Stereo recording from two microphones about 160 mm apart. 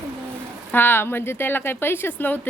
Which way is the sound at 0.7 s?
15° left (ahead or behind).